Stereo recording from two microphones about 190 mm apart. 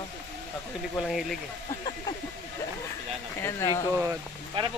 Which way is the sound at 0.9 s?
Centre (ahead or behind).